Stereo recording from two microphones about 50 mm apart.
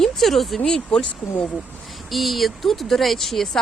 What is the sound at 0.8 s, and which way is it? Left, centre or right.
Speech, left.